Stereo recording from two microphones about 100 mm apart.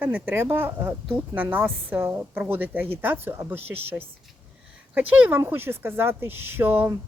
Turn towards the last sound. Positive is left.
turn(degrees=-20)  # may be behind; listen again after turning